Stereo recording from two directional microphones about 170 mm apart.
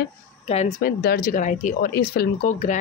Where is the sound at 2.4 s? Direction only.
45° left (ahead or behind).